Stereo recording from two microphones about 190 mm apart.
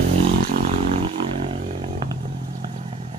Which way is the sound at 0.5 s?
35° right (ahead or behind).